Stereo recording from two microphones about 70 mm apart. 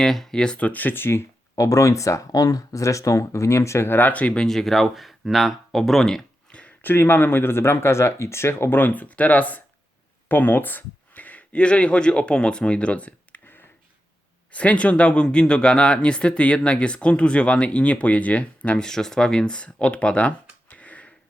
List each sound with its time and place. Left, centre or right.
0.0 s speech: centre; by 1.2 s left
1.5 s speech: left; by 4.4 s centre
4.4 s speech: centre
6.5 s a sound: centre
6.8 s speech: left
18.9 s speech: centre